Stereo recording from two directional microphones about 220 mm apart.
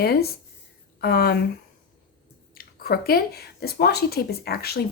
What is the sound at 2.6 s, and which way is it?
Speech, 40° left (ahead or behind).